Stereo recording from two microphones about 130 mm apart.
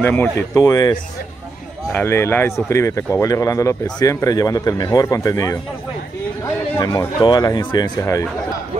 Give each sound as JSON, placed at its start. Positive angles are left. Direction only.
{"t": 0.0, "sound": "speech", "side_deg": 15}
{"t": 0.6, "sound": "speech", "side_deg": 25}
{"t": 1.9, "sound": "speech", "side_deg": 15}
{"t": 6.8, "sound": "speech", "side_deg": 30}